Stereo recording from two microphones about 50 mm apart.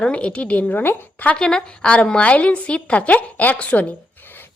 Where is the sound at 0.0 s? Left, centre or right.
Left.